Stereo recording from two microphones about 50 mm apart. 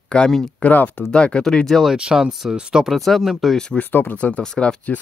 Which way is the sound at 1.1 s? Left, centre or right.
Centre.